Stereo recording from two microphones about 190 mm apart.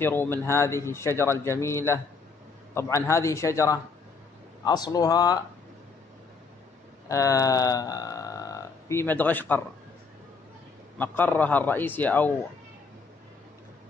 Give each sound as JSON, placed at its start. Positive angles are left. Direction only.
{"t": 0.0, "sound": "a man's voice", "side_deg": 10}
{"t": 7.1, "sound": "speech", "side_deg": 15}
{"t": 11.0, "sound": "a man's voice", "side_deg": 10}